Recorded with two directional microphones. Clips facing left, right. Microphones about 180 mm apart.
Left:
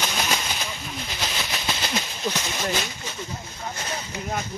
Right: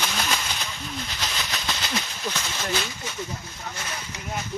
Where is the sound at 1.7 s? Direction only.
15° left (ahead or behind).